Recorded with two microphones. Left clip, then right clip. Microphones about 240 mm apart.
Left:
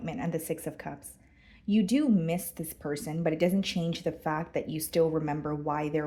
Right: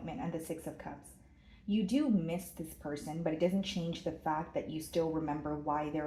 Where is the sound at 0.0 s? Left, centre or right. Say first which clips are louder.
Left 6 dB; left.